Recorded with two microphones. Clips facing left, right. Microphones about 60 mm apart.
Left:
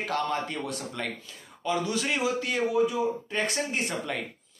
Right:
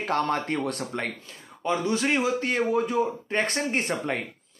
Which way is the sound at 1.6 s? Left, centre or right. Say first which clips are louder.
Right 3 dB; right.